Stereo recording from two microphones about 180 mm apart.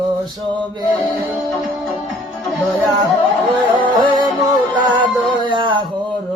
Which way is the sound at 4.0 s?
25° right (ahead or behind).